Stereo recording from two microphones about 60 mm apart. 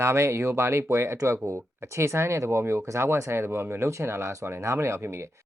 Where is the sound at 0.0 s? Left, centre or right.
Right.